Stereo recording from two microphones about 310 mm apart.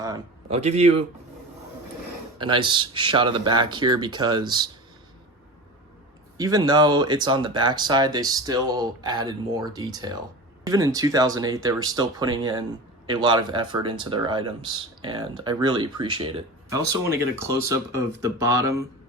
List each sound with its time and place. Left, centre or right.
0.0 s a man's voice: centre
2.4 s speech: centre
6.3 s speech: centre